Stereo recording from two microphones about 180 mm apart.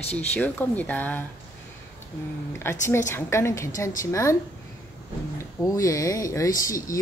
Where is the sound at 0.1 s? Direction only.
10° left (ahead or behind).